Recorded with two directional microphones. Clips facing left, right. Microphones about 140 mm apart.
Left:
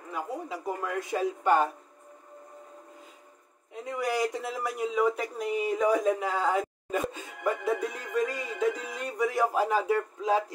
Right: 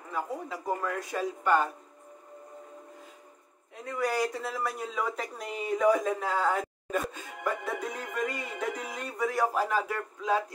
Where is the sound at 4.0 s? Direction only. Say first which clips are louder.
Even; 15° left (ahead or behind).